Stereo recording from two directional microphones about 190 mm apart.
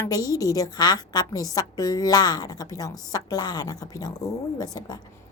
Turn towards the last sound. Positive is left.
turn(degrees=20)  # may be behind; listen again after turning